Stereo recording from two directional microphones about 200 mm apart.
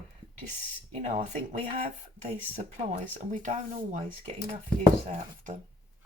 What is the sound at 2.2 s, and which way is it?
Speech, 30° right (ahead or behind).